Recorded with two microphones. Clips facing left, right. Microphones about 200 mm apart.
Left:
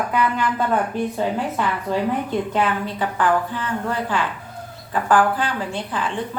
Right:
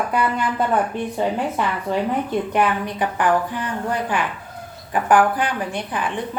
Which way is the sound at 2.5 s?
15° right (ahead or behind).